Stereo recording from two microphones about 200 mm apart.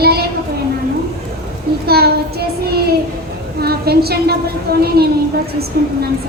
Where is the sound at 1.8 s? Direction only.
50° right (ahead or behind).